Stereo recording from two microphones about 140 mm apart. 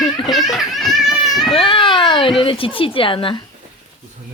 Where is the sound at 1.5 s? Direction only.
40° left (ahead or behind).